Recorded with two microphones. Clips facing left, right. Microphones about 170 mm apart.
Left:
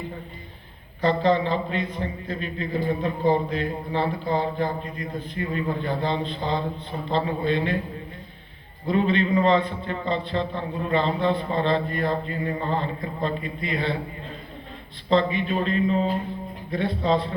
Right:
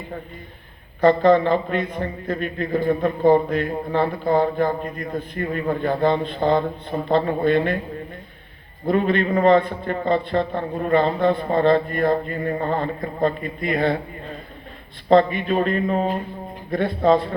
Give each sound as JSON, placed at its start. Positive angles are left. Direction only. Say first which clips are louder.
{"t": 1.0, "sound": "a man's voice", "louder": "right 6 dB", "side_deg": -55}
{"t": 8.9, "sound": "a man's voice", "louder": "right 2 dB", "side_deg": -55}
{"t": 15.1, "sound": "a man's voice", "louder": "right 5 dB", "side_deg": -55}